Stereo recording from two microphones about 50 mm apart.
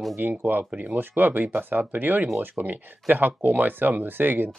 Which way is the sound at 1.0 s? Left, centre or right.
Right.